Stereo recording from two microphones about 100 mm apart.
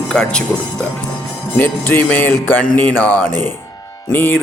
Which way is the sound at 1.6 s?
20° left (ahead or behind).